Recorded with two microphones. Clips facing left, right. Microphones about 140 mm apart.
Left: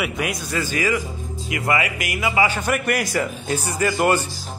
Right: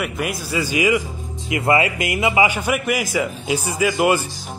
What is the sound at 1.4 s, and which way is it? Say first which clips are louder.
Speech: right 5 dB; 25° right (ahead or behind).